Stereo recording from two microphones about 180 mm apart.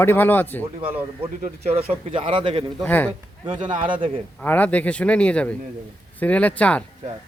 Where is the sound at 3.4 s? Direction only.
25° right (ahead or behind).